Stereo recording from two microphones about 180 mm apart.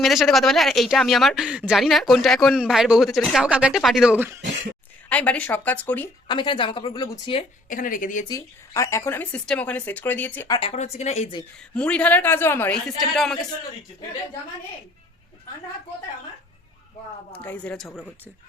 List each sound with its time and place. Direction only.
0.0 s speech: centre (ahead or behind)
5.0 s speech: 10° left (ahead or behind)
6.2 s a woman's voice: 25° left (ahead or behind)
7.7 s speech: 50° left (ahead or behind)
8.3 s speech: 15° left (ahead or behind)
10.7 s speech: 40° left (ahead or behind)
11.7 s speech: 5° left (ahead or behind)
17.3 s speech: 10° left (ahead or behind)